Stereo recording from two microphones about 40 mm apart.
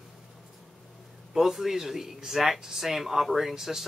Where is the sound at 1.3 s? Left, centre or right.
Centre.